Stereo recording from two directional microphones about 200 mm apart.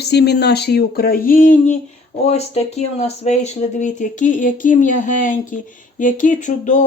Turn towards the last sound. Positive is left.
turn(degrees=40)  # may be behind; listen again after turning